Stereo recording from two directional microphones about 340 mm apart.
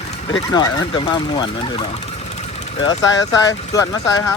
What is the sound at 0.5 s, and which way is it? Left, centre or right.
Speech, centre.